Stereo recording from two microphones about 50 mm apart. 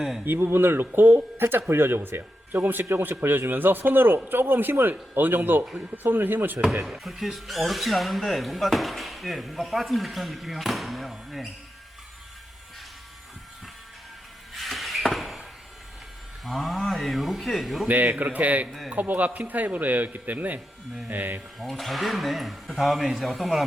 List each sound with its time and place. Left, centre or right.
0.0 s speech: centre
0.3 s speech: right
6.8 s speech: centre
14.5 s a sound: centre
16.4 s speech: centre
17.8 s speech: right
21.6 s speech: centre